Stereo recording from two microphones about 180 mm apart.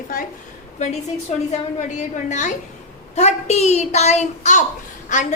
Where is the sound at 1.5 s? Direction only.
40° left (ahead or behind).